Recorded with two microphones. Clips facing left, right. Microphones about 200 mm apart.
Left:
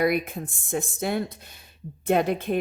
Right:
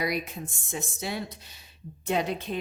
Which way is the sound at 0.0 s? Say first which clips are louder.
Left 7 dB; 55° left (ahead or behind).